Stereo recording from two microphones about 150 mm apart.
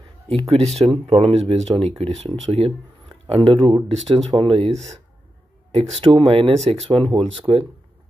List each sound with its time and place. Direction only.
0.3 s speech: 40° right (ahead or behind)